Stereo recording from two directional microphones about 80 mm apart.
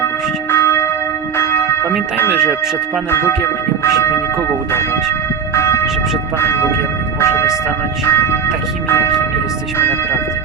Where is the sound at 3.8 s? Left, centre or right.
Left.